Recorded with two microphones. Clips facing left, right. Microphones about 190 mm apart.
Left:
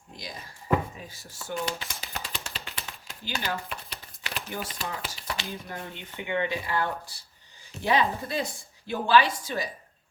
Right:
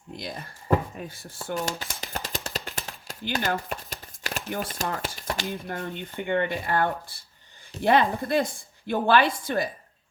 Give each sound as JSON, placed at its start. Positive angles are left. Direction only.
{"t": 0.2, "sound": "a woman's voice", "side_deg": -55}
{"t": 1.5, "sound": "speech", "side_deg": -40}
{"t": 2.0, "sound": "a sound", "side_deg": -45}
{"t": 7.9, "sound": "a woman's voice", "side_deg": -55}